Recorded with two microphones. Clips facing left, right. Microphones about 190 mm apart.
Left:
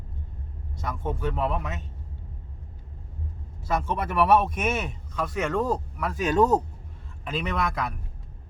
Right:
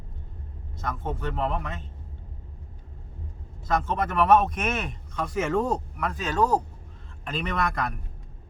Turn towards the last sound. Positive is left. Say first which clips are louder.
# even
turn(degrees=0)  # may be behind; listen again after turning